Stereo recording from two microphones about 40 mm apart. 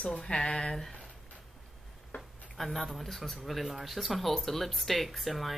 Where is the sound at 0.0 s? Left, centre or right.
Left.